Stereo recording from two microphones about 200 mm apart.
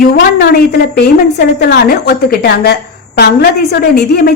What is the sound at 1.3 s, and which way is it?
A woman's voice, 50° left (ahead or behind).